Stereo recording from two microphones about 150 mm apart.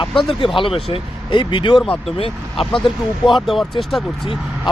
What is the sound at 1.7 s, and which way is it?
Speech, 10° left (ahead or behind).